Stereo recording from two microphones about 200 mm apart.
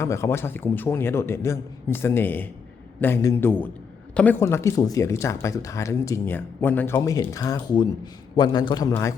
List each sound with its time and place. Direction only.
0.0 s a man's voice: 15° left (ahead or behind)